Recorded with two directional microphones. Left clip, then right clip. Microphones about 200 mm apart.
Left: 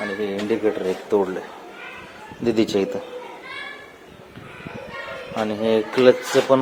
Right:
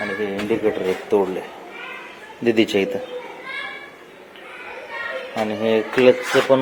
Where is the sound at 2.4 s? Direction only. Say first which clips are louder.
Right 3 dB; centre (ahead or behind).